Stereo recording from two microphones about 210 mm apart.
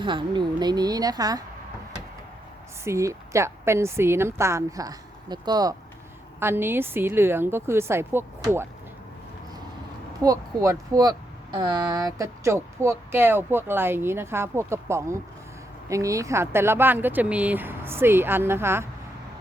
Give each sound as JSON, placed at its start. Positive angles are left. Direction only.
{"t": 0.0, "sound": "a woman's voice", "side_deg": -20}
{"t": 2.8, "sound": "speech", "side_deg": -15}
{"t": 10.2, "sound": "speech", "side_deg": -15}